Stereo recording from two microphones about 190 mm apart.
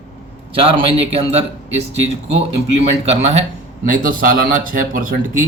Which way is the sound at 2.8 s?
35° right (ahead or behind).